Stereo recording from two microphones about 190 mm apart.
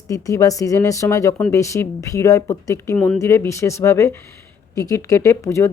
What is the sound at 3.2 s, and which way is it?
Speech, 15° left (ahead or behind).